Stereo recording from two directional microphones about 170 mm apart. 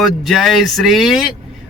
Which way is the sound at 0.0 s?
Centre (ahead or behind).